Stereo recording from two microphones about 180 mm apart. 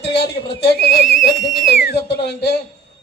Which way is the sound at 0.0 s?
65° left (ahead or behind).